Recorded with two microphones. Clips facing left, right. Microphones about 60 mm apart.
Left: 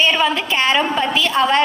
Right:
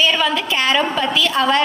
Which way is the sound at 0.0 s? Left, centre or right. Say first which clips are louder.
Left 1 dB; left.